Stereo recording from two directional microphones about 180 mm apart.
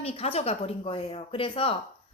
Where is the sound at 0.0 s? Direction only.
35° left (ahead or behind).